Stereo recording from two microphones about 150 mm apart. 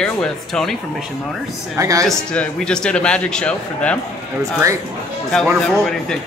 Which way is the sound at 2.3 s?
5° left (ahead or behind).